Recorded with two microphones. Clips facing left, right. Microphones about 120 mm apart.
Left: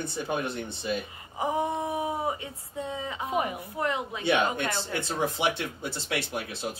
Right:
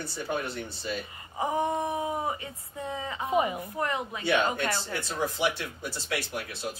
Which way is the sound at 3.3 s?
Centre (ahead or behind).